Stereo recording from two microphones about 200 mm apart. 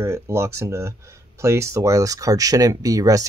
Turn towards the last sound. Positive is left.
turn(degrees=-15)  # may be behind; listen again after turning